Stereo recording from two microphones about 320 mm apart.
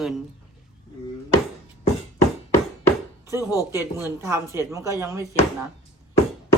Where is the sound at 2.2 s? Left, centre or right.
Centre.